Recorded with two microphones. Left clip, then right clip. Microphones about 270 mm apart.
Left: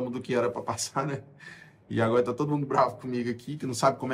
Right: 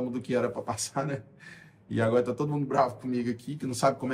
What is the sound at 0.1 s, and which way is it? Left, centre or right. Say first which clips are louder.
A man's voice: left 3 dB; centre.